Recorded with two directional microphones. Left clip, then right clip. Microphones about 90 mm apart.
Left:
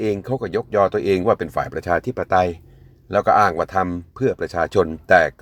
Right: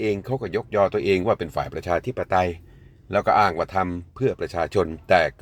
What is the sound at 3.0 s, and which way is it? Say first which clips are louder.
Speech: left 3 dB; 25° left (ahead or behind).